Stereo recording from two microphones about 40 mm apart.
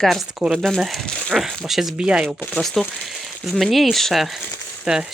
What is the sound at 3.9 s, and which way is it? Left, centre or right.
Speech, centre.